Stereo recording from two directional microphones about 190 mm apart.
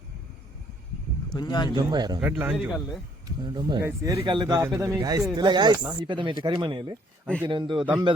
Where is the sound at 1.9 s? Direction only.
20° right (ahead or behind).